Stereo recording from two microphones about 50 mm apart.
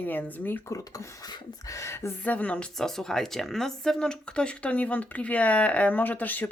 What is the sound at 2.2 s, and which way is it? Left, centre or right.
Speech, left.